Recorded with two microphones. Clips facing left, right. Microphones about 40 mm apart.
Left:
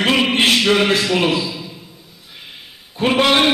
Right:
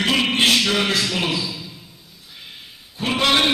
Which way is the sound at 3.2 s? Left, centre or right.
Centre.